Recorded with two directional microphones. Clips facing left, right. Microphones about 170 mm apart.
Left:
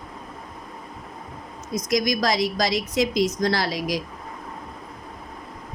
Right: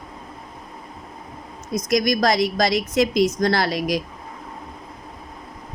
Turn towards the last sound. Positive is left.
turn(degrees=-60)  # may be behind; listen again after turning